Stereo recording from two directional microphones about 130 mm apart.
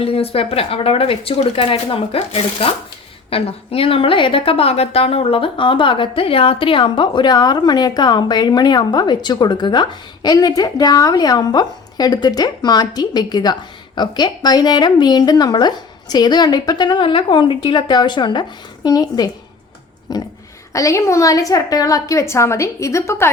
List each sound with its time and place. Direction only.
0.0 s a woman's voice: 50° left (ahead or behind); by 23.3 s 20° left (ahead or behind)